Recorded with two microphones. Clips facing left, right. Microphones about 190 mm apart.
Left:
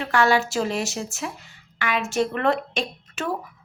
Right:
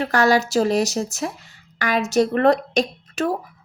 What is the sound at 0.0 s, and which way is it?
Speech, 40° right (ahead or behind).